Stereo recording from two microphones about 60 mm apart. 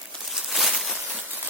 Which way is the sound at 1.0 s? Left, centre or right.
Right.